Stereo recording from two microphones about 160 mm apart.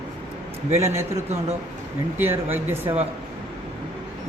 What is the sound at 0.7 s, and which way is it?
Speech, 15° right (ahead or behind).